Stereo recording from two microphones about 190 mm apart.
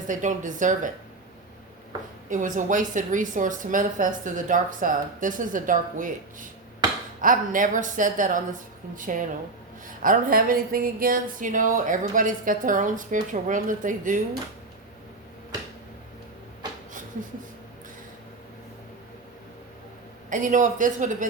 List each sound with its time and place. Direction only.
0.1 s a woman's voice: 40° right (ahead or behind)
2.3 s speech: 40° right (ahead or behind)
20.3 s a woman's voice: 40° right (ahead or behind)